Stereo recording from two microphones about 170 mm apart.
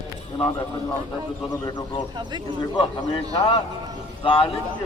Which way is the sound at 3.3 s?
35° left (ahead or behind).